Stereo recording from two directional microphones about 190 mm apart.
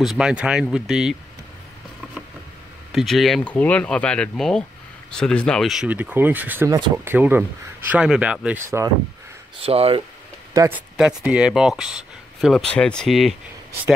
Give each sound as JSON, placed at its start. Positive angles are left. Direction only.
{"t": 0.0, "sound": "speech", "side_deg": -5}
{"t": 2.9, "sound": "speech", "side_deg": 0}
{"t": 9.6, "sound": "speech", "side_deg": -30}
{"t": 10.5, "sound": "speech", "side_deg": -15}
{"t": 11.0, "sound": "speech", "side_deg": -5}